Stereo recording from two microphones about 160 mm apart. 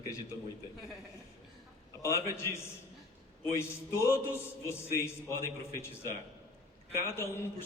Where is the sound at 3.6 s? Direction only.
15° left (ahead or behind).